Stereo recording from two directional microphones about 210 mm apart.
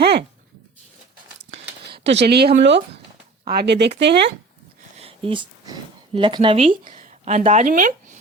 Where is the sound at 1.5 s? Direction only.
60° right (ahead or behind).